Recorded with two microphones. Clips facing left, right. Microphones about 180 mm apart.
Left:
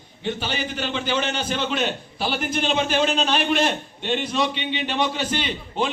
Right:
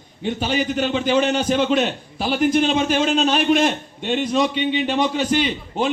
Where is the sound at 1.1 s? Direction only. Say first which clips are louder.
Right 9 dB; 45° right (ahead or behind).